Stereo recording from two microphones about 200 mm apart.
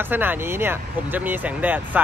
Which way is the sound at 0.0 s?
10° right (ahead or behind).